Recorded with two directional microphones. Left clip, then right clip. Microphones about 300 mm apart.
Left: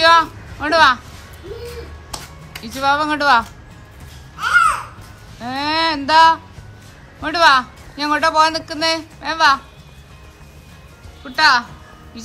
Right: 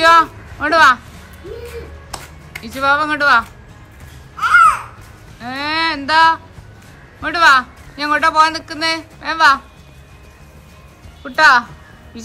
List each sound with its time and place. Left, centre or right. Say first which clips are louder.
0.0 s a sound: right 2 dB; centre
2.0 s music: right 1 dB; centre
4.4 s babbling: right 4 dB; centre
5.4 s a man's voice: even; centre
11.2 s a woman's voice: right 3 dB; centre